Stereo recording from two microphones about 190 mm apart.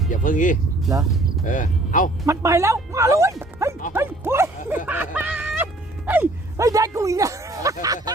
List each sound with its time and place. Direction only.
0.1 s speech: 45° left (ahead or behind)
2.2 s speech: 15° right (ahead or behind)
3.6 s music: 15° right (ahead or behind)
3.9 s speech: 10° right (ahead or behind)
4.9 s music: 10° right (ahead or behind)
6.1 s speech: 15° right (ahead or behind)